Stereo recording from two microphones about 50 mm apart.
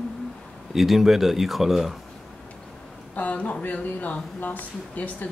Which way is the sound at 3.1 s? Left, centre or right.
Left.